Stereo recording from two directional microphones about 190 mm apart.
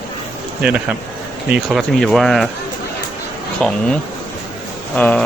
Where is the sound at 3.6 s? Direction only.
5° left (ahead or behind).